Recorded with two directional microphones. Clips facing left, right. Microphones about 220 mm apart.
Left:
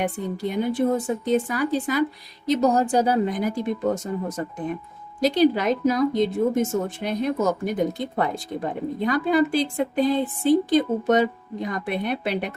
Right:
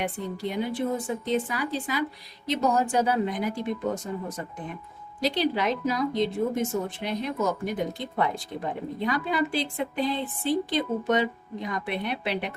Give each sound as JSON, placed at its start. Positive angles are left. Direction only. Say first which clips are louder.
{"t": 0.0, "sound": "a woman's voice", "louder": "left 4 dB", "side_deg": 45}
{"t": 5.2, "sound": "a woman's voice", "louder": "left 6 dB", "side_deg": 45}